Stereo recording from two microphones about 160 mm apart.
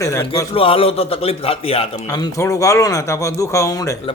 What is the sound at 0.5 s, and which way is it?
A man's voice, 35° left (ahead or behind).